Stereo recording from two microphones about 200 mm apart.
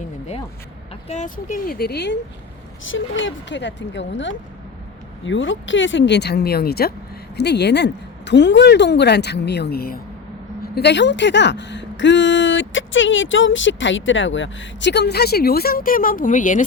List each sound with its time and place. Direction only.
1.0 s speech: 35° left (ahead or behind); by 2.1 s 55° left (ahead or behind)
2.8 s speech: 70° left (ahead or behind); by 10.0 s 50° left (ahead or behind)
10.8 s speech: 60° left (ahead or behind); by 16.6 s 40° left (ahead or behind)